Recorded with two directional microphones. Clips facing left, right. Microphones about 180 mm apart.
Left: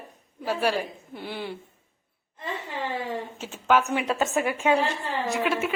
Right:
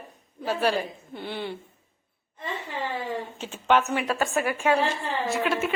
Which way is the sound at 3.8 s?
20° left (ahead or behind).